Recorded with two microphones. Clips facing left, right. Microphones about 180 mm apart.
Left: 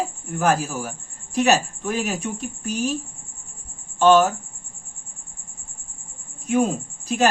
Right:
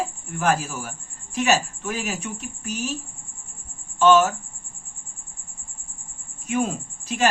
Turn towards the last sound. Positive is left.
turn(degrees=40)  # may be behind; listen again after turning